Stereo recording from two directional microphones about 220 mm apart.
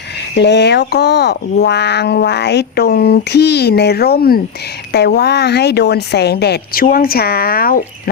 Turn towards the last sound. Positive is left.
turn(degrees=40)  # may be behind; listen again after turning